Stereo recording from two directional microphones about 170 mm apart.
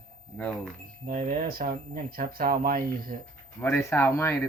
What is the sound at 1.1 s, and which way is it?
Speech, 55° right (ahead or behind).